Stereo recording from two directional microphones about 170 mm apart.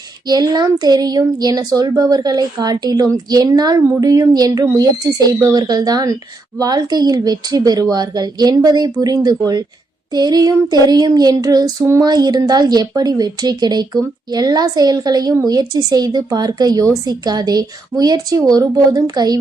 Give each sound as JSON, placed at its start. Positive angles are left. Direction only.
{"t": 0.3, "sound": "child singing", "side_deg": -25}